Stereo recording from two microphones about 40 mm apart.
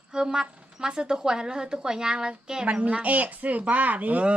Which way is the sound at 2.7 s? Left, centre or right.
Right.